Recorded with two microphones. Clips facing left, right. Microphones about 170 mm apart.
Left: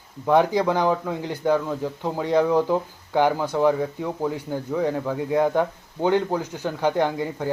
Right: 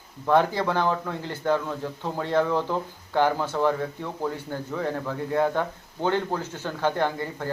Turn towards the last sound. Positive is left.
turn(degrees=15)  # may be behind; listen again after turning